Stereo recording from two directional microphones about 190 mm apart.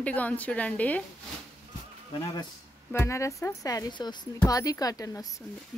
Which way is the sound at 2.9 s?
15° left (ahead or behind).